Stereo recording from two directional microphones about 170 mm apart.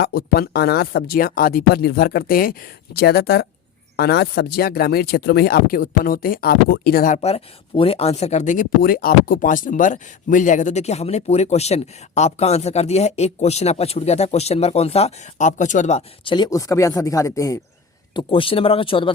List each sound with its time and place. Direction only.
0.0 s speech: 60° left (ahead or behind); by 17.6 s 20° left (ahead or behind)
18.1 s speech: 30° left (ahead or behind)